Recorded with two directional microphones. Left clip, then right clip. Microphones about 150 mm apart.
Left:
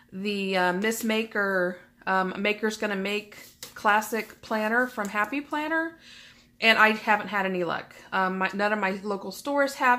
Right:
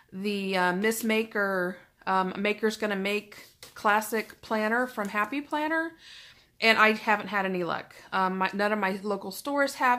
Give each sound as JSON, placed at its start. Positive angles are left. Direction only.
{"t": 0.2, "sound": "a woman's voice", "side_deg": -30}